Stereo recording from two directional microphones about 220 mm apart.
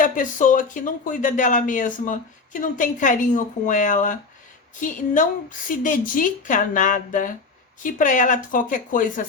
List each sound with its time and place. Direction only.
0.0 s speech: 35° left (ahead or behind)